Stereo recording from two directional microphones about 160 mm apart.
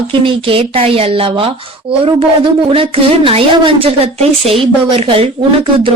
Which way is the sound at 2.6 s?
35° right (ahead or behind).